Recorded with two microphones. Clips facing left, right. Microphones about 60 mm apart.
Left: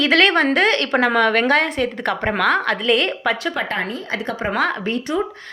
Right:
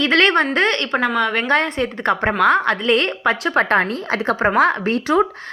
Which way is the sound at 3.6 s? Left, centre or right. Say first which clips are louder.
Right 6 dB; right.